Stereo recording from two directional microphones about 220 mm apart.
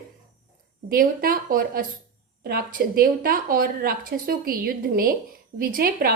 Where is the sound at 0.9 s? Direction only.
40° right (ahead or behind).